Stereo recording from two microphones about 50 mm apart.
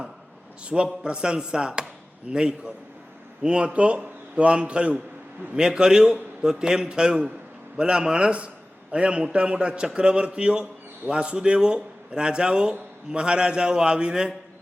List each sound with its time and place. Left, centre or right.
0.6 s a man's voice: centre
5.5 s a man's voice: centre